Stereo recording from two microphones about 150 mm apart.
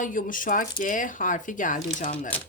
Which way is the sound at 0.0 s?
65° left (ahead or behind).